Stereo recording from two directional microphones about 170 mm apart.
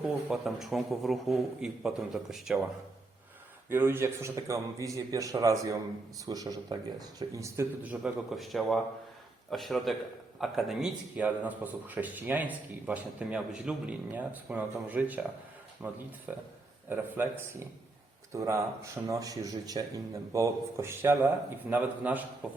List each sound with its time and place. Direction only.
0.3 s a man's voice: centre (ahead or behind)
3.7 s a man's voice: 15° right (ahead or behind)